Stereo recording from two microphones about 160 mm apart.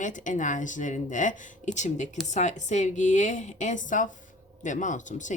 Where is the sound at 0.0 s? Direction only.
55° left (ahead or behind).